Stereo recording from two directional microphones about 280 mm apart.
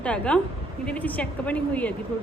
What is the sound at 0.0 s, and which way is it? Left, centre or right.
A woman's voice, centre.